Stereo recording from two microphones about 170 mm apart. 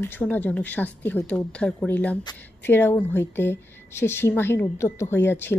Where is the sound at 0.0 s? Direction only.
10° left (ahead or behind).